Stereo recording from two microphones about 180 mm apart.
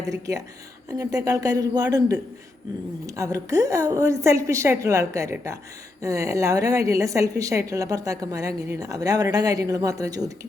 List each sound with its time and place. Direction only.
0.1 s a woman's voice: 20° right (ahead or behind)